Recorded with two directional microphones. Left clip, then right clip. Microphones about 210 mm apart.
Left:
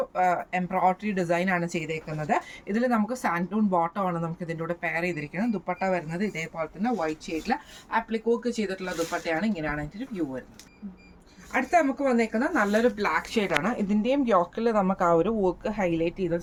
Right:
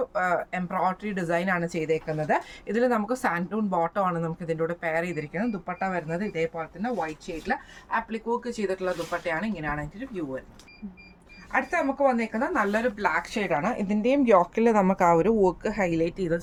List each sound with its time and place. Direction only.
0.1 s speech: 20° right (ahead or behind)
11.5 s speech: 15° right (ahead or behind); by 16.4 s 35° right (ahead or behind)